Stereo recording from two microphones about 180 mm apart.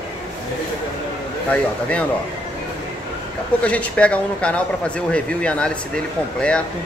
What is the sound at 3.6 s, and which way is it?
Speech, 5° left (ahead or behind).